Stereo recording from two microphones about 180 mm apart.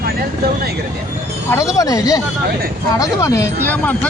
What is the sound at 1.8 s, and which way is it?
Speech, 20° left (ahead or behind).